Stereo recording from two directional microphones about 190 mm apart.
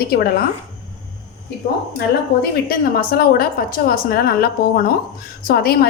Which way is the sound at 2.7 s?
50° left (ahead or behind).